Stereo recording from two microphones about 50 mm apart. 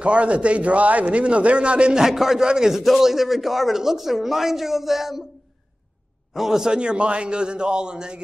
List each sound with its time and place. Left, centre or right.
0.0 s a man's voice: right
2.0 s a man's voice: centre
6.3 s a man's voice: centre